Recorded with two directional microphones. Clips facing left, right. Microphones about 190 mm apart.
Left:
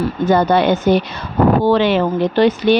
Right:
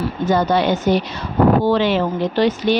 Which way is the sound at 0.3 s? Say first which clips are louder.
Left 3 dB; 55° left (ahead or behind).